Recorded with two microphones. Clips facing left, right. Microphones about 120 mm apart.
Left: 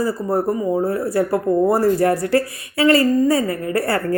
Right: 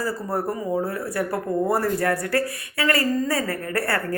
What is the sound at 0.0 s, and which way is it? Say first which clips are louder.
Speech: left 6 dB; 25° left (ahead or behind).